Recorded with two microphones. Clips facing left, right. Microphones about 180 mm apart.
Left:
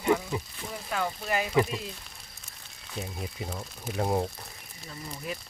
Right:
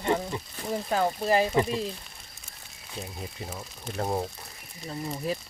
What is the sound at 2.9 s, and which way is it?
Speech, 5° left (ahead or behind).